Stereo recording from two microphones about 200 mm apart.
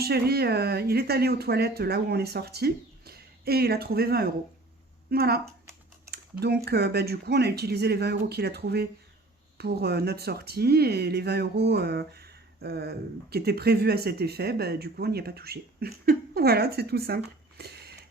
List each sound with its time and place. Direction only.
0.0 s speech: 50° right (ahead or behind)
6.1 s typing: 55° right (ahead or behind)
6.7 s speech: 55° right (ahead or behind)
17.6 s a sound: 55° right (ahead or behind)